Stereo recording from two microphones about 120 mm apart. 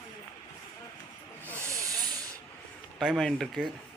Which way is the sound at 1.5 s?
25° right (ahead or behind).